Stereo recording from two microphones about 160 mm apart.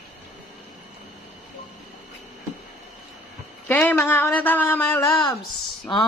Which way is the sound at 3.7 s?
10° left (ahead or behind).